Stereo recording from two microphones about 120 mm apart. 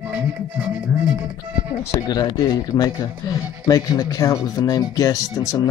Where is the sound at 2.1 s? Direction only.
35° left (ahead or behind).